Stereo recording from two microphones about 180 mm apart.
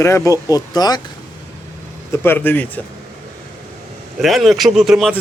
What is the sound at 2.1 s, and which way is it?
Speech, 10° left (ahead or behind).